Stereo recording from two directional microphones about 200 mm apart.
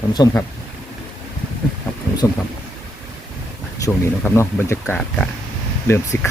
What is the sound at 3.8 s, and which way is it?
Speech, 15° left (ahead or behind).